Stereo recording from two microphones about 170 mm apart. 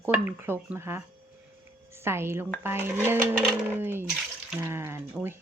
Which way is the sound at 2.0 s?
15° right (ahead or behind).